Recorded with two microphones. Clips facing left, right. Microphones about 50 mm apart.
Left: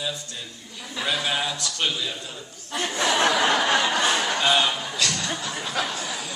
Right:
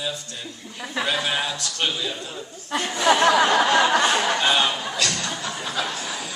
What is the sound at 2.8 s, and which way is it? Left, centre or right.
Speech, right.